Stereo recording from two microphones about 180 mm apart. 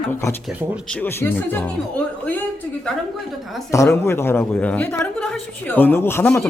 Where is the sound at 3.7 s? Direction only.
15° left (ahead or behind).